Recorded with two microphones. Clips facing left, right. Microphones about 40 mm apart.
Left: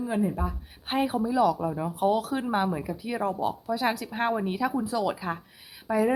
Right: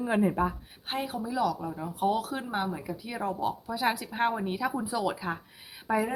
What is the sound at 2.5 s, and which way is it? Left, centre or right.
Speech, centre.